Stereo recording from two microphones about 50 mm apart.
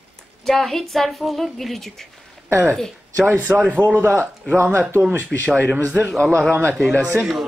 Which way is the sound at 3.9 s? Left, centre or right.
Right.